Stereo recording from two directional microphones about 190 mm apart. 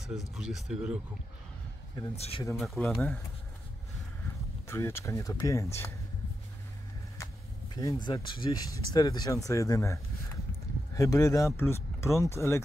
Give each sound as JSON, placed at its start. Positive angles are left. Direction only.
{"t": 0.3, "sound": "speech", "side_deg": 0}
{"t": 2.1, "sound": "speech", "side_deg": 30}
{"t": 2.5, "sound": "speech", "side_deg": 0}
{"t": 4.6, "sound": "speech", "side_deg": 15}
{"t": 7.7, "sound": "speech", "side_deg": 20}